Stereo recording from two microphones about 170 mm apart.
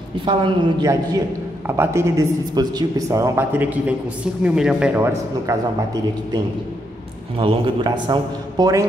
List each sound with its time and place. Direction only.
0.2 s a man's voice: 30° right (ahead or behind)
7.3 s a man's voice: 30° right (ahead or behind)